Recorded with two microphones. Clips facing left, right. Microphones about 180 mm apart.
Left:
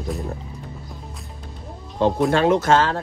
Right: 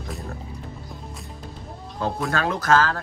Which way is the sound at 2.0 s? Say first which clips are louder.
Left 7 dB; 25° left (ahead or behind).